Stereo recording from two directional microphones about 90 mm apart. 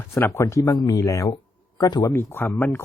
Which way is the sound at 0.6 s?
50° left (ahead or behind).